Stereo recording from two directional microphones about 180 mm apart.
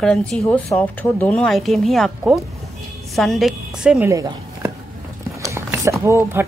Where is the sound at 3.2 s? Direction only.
Centre (ahead or behind).